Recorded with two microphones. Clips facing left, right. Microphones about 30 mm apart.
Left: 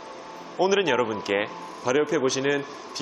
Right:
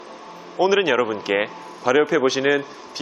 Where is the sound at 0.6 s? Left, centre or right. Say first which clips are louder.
Right 4 dB; centre.